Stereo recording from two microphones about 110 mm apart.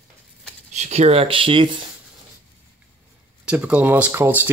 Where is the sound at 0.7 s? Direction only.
85° right; by 1.8 s 50° right (ahead or behind).